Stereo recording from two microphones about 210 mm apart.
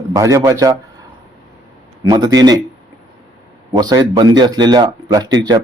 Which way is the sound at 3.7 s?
20° right (ahead or behind).